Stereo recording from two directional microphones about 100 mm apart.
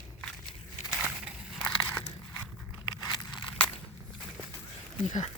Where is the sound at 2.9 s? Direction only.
45° left (ahead or behind).